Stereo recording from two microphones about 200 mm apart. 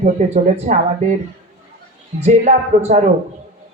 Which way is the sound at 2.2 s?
35° right (ahead or behind).